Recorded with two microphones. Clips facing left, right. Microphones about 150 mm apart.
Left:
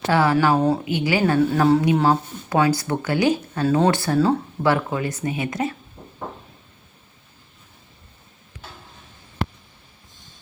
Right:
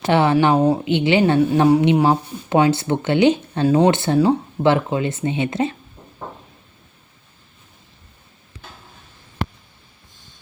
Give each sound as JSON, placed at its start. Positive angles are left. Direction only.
{"t": 0.1, "sound": "a woman's voice", "side_deg": -25}